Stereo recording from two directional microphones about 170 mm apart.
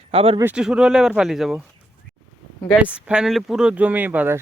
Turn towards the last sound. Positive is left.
turn(degrees=-10)  # may be behind; listen again after turning